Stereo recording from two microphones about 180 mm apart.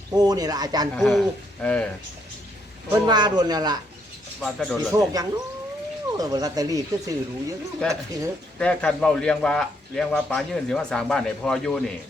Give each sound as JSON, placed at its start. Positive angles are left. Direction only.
{"t": 0.1, "sound": "speech", "side_deg": -20}
{"t": 0.9, "sound": "a man's voice", "side_deg": 0}
{"t": 2.9, "sound": "speech", "side_deg": -25}
{"t": 4.4, "sound": "a man's voice", "side_deg": 0}
{"t": 4.9, "sound": "speech", "side_deg": -20}
{"t": 8.5, "sound": "a man's voice", "side_deg": 5}